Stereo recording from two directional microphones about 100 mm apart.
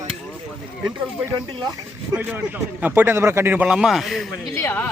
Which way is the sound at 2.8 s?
20° right (ahead or behind).